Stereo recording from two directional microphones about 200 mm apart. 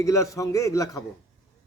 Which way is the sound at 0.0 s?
15° left (ahead or behind).